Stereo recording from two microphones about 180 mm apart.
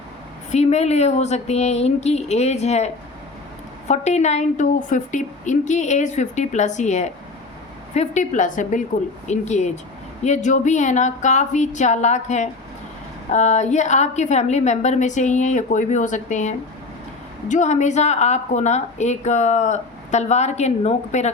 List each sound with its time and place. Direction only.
0.5 s a woman's voice: 40° left (ahead or behind)